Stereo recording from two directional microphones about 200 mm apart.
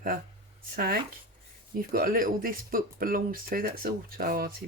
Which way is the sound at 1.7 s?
45° right (ahead or behind).